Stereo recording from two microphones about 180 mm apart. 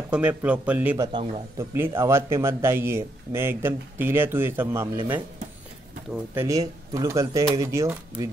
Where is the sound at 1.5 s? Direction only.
15° right (ahead or behind).